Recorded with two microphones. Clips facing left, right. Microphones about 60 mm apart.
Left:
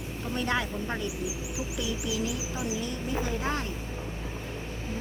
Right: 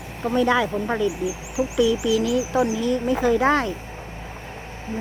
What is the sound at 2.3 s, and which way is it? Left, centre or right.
Speech, right.